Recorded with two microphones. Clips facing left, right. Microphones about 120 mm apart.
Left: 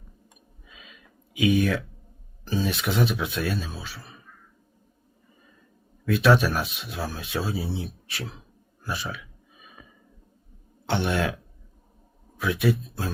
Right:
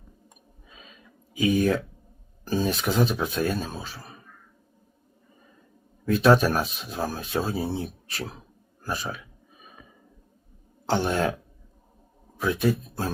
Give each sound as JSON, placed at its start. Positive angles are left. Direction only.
{"t": 0.7, "sound": "a sound", "side_deg": -35}
{"t": 2.4, "sound": "speech", "side_deg": -45}
{"t": 6.1, "sound": "a man's voice", "side_deg": -40}
{"t": 10.8, "sound": "speech", "side_deg": -40}
{"t": 12.4, "sound": "speech", "side_deg": -40}